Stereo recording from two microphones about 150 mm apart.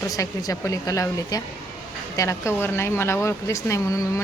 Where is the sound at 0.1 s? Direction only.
20° left (ahead or behind).